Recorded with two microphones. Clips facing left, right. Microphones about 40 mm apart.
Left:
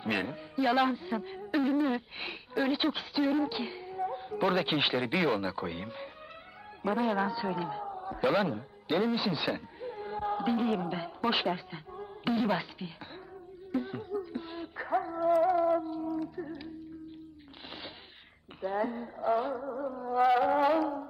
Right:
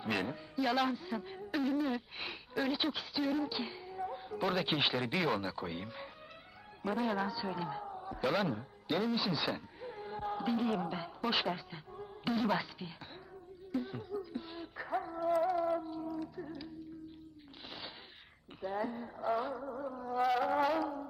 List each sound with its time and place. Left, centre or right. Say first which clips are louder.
0.0 s a man's voice: left 3 dB; centre
0.3 s music: left 8 dB; centre
4.7 s speech: left 3 dB; centre
4.9 s a man's voice: left 5 dB; centre
13.7 s music: left 4 dB; centre
16.3 s a sound: left 4 dB; centre
18.6 s speech: left 5 dB; centre
20.1 s music: left 6 dB; centre